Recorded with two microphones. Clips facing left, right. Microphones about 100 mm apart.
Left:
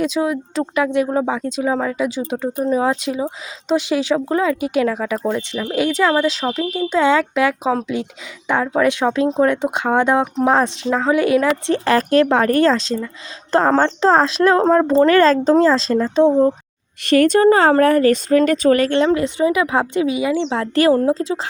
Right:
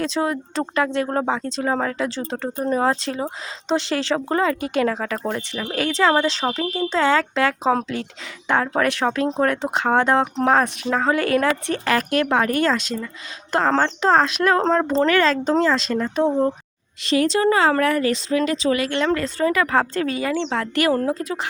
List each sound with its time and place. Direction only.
0.0 s speech: 5° left (ahead or behind)
6.4 s speech: 15° right (ahead or behind)
6.7 s speech: 15° left (ahead or behind); by 13.1 s 30° left (ahead or behind)
13.7 s speech: 20° left (ahead or behind)
14.0 s speech: 35° left (ahead or behind)
14.6 s speech: 15° left (ahead or behind)
15.0 s speech: 35° left (ahead or behind)
17.1 s speech: 55° left (ahead or behind)
17.5 s speech: 35° left (ahead or behind)
18.9 s speech: 20° left (ahead or behind)